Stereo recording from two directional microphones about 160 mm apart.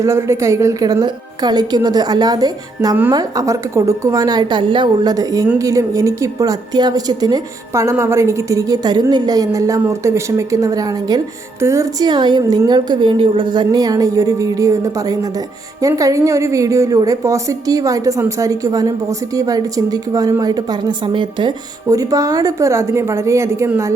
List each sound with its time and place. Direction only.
0.0 s a woman's voice: 15° right (ahead or behind)